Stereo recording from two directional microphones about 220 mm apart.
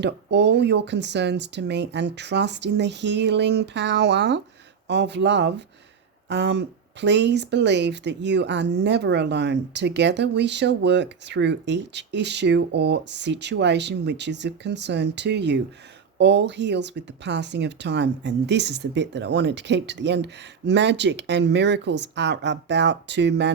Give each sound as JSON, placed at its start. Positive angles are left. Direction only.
{"t": 0.0, "sound": "speech", "side_deg": -50}